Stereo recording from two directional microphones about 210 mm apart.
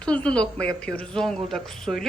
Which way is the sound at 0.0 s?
5° left (ahead or behind).